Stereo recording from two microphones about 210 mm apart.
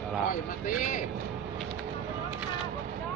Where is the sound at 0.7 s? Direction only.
40° left (ahead or behind).